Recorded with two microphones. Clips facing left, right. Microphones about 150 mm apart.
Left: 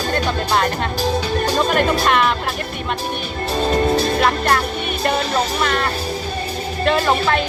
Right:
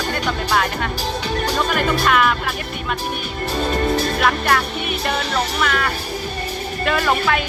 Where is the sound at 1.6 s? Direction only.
35° left (ahead or behind).